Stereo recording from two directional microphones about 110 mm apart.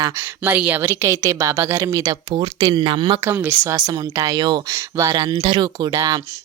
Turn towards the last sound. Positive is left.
turn(degrees=-35)  # may be behind; listen again after turning